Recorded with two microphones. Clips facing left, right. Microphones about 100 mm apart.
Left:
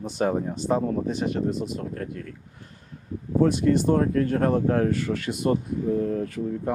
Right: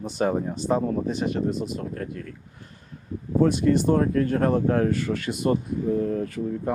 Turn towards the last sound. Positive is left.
turn(degrees=-20)  # may be behind; listen again after turning